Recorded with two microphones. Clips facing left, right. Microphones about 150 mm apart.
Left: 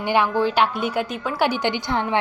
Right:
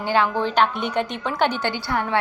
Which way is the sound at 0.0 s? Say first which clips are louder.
Left 1 dB; 15° left (ahead or behind).